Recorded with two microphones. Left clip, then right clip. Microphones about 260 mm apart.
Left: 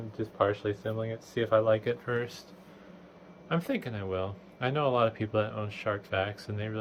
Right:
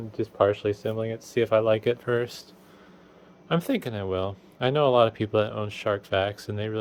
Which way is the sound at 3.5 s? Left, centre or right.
Right.